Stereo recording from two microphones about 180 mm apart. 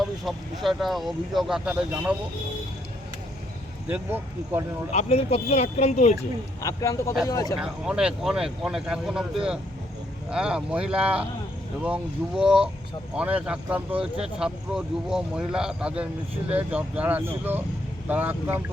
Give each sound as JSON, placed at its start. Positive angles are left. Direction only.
{"t": 0.0, "sound": "speech", "side_deg": 0}
{"t": 3.8, "sound": "speech", "side_deg": -10}
{"t": 4.9, "sound": "speech", "side_deg": 35}
{"t": 6.6, "sound": "a man's voice", "side_deg": 20}
{"t": 7.6, "sound": "speech", "side_deg": -5}
{"t": 10.2, "sound": "speech", "side_deg": -5}
{"t": 12.4, "sound": "speech", "side_deg": -5}